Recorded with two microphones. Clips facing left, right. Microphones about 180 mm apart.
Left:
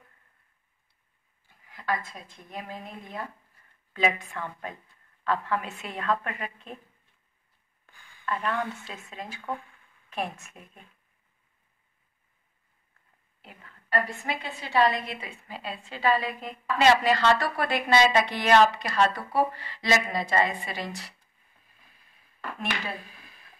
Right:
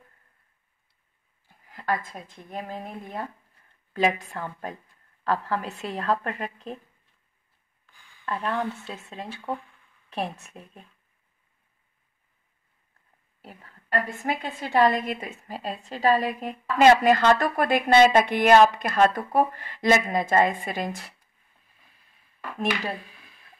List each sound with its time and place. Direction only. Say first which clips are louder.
2.5 s a woman's voice: right 4 dB; 50° right (ahead or behind)
8.3 s a woman's voice: right 2 dB; 35° right (ahead or behind)
13.4 s a woman's voice: right 4 dB; 40° right (ahead or behind)